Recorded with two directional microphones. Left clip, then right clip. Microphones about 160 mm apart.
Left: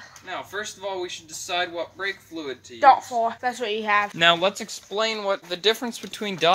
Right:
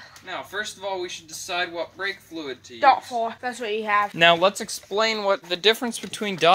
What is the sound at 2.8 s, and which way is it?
Speech, 25° left (ahead or behind).